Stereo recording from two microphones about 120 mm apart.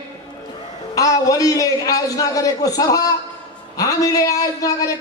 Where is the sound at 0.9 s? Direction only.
30° left (ahead or behind).